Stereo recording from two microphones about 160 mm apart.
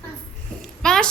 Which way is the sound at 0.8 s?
5° left (ahead or behind).